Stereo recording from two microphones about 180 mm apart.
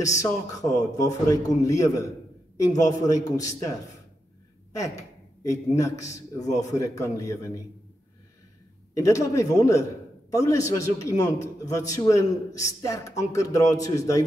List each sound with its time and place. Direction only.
0.0 s a man's voice: 20° left (ahead or behind)
5.4 s a man's voice: 15° left (ahead or behind)
8.9 s a man's voice: 15° left (ahead or behind)